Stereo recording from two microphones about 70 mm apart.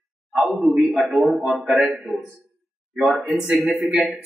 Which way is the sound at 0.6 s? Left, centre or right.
Centre.